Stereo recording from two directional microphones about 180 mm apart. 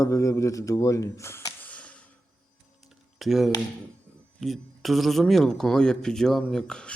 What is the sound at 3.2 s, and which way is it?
Speech, centre (ahead or behind).